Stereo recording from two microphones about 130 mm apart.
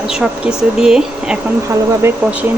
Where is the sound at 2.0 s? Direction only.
20° right (ahead or behind).